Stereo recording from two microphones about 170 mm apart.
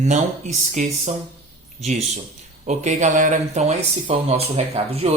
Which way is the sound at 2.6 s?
45° right (ahead or behind).